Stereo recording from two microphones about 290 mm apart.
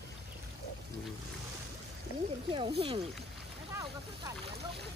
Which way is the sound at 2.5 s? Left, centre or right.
Centre.